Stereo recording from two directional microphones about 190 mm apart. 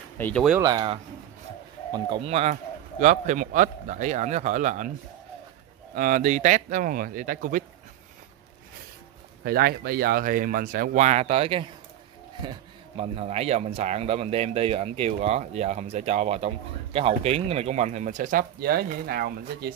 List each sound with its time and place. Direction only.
0.2 s speech: 5° left (ahead or behind)
0.6 s speech: 20° right (ahead or behind); by 4.9 s 40° right (ahead or behind)
5.9 s speech: 45° right (ahead or behind)
9.4 s speech: 55° right (ahead or behind)